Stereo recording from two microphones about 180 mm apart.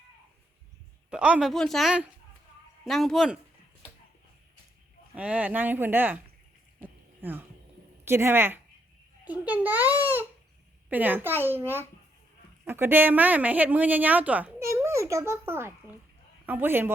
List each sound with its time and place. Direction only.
1.1 s speech: 5° right (ahead or behind)
5.1 s a woman's voice: 5° right (ahead or behind)
6.8 s a sound: 10° right (ahead or behind)
8.0 s a woman's voice: 15° right (ahead or behind)